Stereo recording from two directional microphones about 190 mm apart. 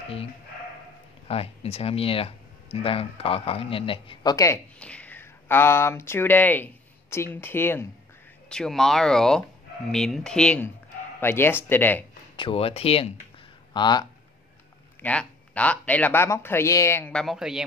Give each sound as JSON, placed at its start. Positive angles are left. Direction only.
{"t": 1.2, "sound": "speech", "side_deg": 30}
{"t": 4.7, "sound": "speech", "side_deg": 5}
{"t": 12.4, "sound": "speech", "side_deg": 30}
{"t": 15.0, "sound": "speech", "side_deg": 5}